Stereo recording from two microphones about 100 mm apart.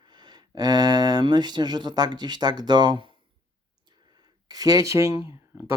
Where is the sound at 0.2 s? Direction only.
45° right (ahead or behind).